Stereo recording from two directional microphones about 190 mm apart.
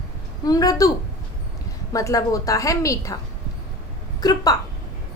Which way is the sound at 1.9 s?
15° left (ahead or behind).